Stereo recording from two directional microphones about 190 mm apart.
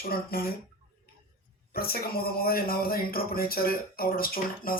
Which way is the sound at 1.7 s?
50° left (ahead or behind).